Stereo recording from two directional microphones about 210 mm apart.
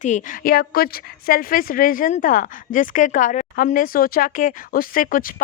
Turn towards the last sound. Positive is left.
turn(degrees=40)  # may be behind; listen again after turning